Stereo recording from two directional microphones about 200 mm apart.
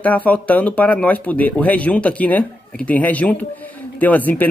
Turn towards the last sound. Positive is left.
turn(degrees=10)  # may be behind; listen again after turning